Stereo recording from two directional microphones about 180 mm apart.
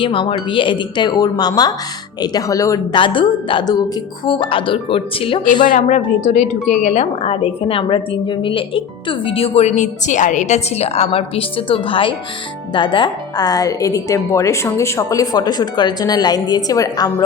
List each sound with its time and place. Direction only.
0.0 s speech: 30° left (ahead or behind)
5.7 s speech: 40° left (ahead or behind); by 17.2 s 20° left (ahead or behind)